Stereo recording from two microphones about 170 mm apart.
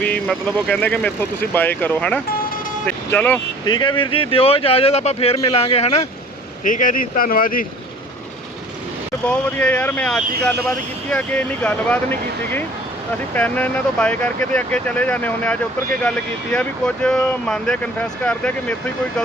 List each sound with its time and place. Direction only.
0.0 s speech: 10° left (ahead or behind)
3.7 s speech: 25° left (ahead or behind)
6.7 s speech: 55° left (ahead or behind)
9.2 s speech: 10° left (ahead or behind)